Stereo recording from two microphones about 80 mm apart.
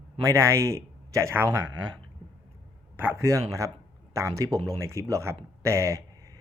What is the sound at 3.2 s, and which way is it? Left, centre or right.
Speech, right.